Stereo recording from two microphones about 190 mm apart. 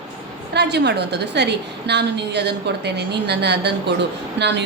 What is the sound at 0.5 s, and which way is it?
A woman's voice, 65° right (ahead or behind).